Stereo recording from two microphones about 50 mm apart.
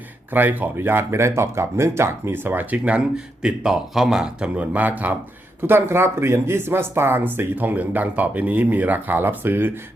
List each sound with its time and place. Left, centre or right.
0.3 s speech: right
1.1 s speech: right
3.4 s speech: centre
4.4 s speech: right
5.6 s speech: right